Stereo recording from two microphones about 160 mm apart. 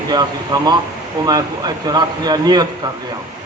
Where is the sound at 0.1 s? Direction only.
25° right (ahead or behind).